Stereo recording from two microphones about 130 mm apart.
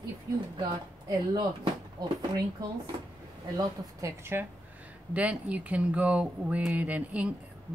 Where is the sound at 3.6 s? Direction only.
20° right (ahead or behind).